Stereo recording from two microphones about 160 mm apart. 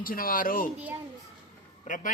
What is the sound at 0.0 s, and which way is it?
Speech, 60° left (ahead or behind).